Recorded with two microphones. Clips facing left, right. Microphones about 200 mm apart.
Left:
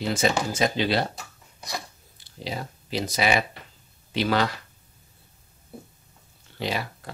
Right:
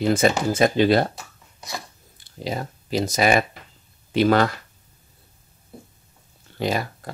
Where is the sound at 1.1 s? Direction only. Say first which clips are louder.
Right 1 dB; centre (ahead or behind).